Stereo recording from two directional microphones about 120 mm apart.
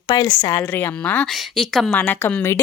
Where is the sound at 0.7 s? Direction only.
15° left (ahead or behind).